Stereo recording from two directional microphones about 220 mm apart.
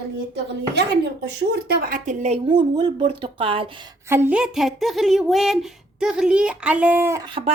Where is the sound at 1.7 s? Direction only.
40° right (ahead or behind); by 3.7 s 25° right (ahead or behind).